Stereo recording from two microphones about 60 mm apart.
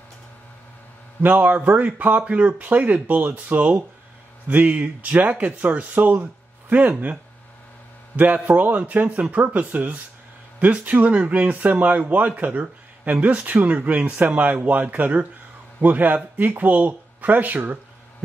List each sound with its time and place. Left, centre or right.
1.2 s speech: right
8.2 s speech: right